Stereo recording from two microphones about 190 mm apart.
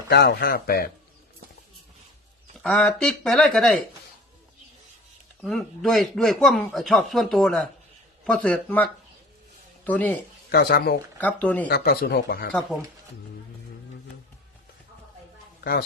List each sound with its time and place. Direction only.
0.1 s speech: 55° left (ahead or behind)
2.6 s speech: 5° left (ahead or behind)
5.4 s a man's voice: centre (ahead or behind)
10.5 s speech: 55° left (ahead or behind)
11.2 s a man's voice: 10° left (ahead or behind)
11.7 s speech: 55° left (ahead or behind)